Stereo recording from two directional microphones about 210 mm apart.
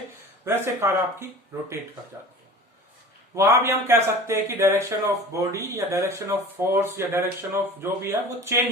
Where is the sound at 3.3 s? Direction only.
15° right (ahead or behind).